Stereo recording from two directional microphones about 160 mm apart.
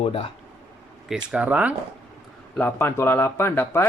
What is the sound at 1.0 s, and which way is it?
Speech, 5° right (ahead or behind).